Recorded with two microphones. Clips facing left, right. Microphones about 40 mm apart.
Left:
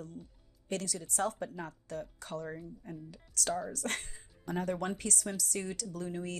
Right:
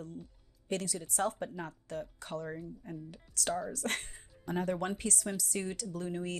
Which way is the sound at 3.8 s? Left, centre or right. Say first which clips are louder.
Right 1 dB; right.